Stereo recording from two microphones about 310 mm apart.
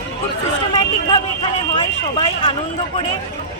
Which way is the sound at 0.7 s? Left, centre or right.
Centre.